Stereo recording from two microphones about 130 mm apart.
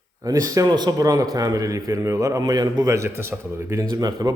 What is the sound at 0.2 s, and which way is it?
Speech, 25° right (ahead or behind).